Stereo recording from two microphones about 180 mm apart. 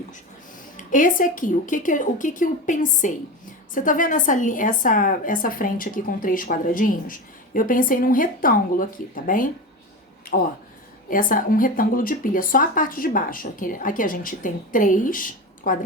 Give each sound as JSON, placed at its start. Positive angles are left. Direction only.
{"t": 0.9, "sound": "a woman's voice", "side_deg": 45}
{"t": 11.1, "sound": "a woman's voice", "side_deg": 50}